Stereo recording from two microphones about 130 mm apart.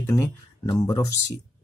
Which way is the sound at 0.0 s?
25° left (ahead or behind).